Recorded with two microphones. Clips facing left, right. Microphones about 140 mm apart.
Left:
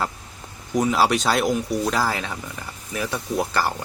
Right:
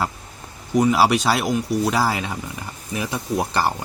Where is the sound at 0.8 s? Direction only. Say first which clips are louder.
Right 3 dB; 5° right (ahead or behind).